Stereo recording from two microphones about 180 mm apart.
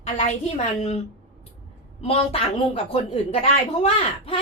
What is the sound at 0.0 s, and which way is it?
Speech, 40° left (ahead or behind).